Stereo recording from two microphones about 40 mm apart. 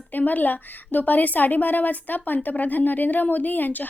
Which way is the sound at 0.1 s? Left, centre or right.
Left.